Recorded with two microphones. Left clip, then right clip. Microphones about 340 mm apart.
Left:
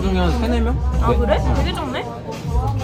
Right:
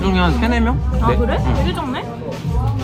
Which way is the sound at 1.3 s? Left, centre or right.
Centre.